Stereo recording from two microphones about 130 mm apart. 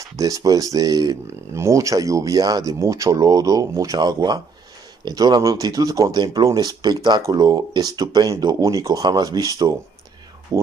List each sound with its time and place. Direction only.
0.0 s speech: 25° right (ahead or behind)